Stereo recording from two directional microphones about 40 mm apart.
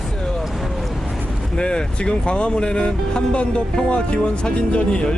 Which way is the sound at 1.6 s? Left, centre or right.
Left.